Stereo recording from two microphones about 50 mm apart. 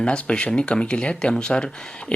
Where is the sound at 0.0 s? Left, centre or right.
Left.